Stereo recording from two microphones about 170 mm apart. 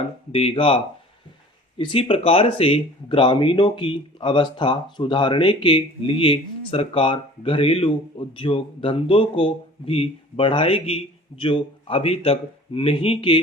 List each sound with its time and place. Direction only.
0.3 s speech: 30° left (ahead or behind)
1.8 s speech: 30° left (ahead or behind)